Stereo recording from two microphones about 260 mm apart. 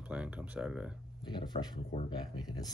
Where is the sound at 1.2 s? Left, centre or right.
Centre.